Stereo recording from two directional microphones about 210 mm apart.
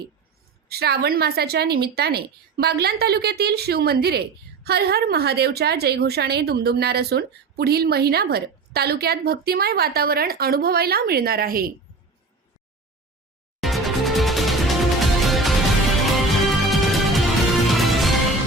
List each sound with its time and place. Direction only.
0.7 s a woman's voice: 50° right (ahead or behind)
13.6 s music: centre (ahead or behind)